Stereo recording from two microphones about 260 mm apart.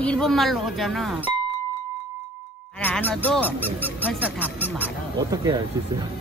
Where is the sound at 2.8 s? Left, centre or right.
Centre.